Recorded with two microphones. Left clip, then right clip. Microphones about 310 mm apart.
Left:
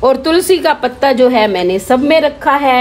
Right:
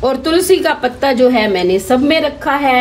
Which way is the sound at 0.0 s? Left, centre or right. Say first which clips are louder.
Left 3 dB; left.